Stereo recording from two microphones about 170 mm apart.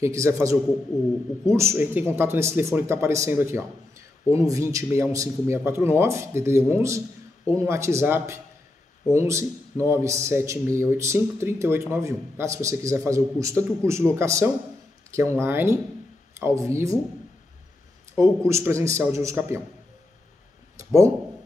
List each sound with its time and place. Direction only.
0.0 s speech: 15° right (ahead or behind)
18.1 s speech: 15° right (ahead or behind)